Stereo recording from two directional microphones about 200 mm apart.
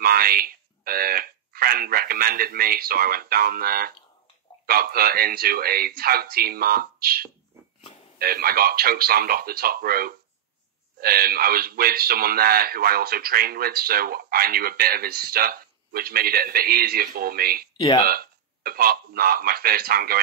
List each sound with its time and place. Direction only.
0.0 s speech: 50° right (ahead or behind)
17.7 s speech: 20° left (ahead or behind)
18.0 s speech: 45° right (ahead or behind)